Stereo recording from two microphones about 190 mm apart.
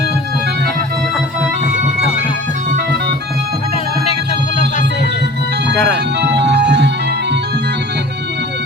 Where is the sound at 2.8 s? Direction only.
60° right (ahead or behind).